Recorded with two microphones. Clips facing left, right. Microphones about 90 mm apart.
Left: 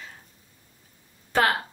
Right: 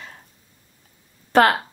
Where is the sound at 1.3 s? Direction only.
65° right (ahead or behind).